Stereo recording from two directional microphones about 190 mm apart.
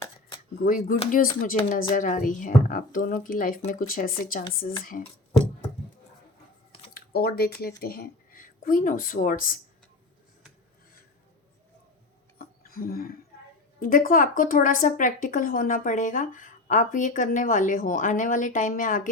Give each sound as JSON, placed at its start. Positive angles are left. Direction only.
{"t": 0.6, "sound": "speech", "side_deg": 45}
{"t": 6.9, "sound": "speech", "side_deg": 55}
{"t": 12.4, "sound": "a sound", "side_deg": 50}
{"t": 13.7, "sound": "speech", "side_deg": 50}